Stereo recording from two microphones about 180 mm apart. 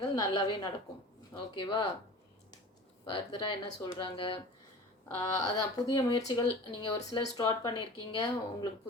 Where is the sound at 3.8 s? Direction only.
25° left (ahead or behind).